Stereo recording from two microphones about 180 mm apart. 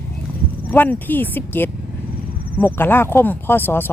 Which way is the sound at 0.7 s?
10° left (ahead or behind).